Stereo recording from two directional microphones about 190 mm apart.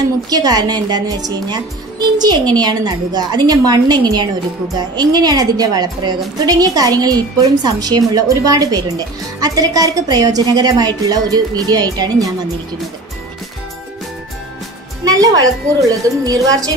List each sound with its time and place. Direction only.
0.3 s a woman's voice: 20° right (ahead or behind)
15.0 s a woman's voice: 20° right (ahead or behind)